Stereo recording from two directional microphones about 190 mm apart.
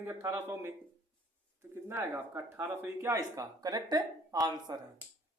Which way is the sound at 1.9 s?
10° right (ahead or behind).